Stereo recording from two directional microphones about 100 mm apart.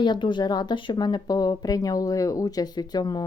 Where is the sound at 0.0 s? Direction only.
50° left (ahead or behind).